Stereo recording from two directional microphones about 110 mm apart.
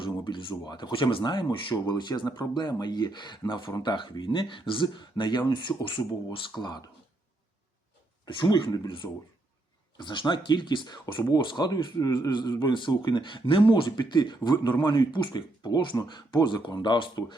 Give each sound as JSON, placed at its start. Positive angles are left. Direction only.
{"t": 0.0, "sound": "speech", "side_deg": 50}
{"t": 8.2, "sound": "speech", "side_deg": 40}
{"t": 10.0, "sound": "speech", "side_deg": 45}
{"t": 13.9, "sound": "speech", "side_deg": 40}